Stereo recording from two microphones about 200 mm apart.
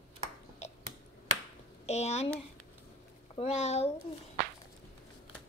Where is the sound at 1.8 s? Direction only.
35° left (ahead or behind).